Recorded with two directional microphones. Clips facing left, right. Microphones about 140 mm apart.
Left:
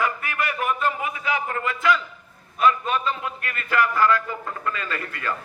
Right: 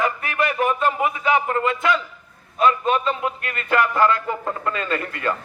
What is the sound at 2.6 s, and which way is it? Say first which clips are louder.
A man's voice: right 2 dB; 25° right (ahead or behind).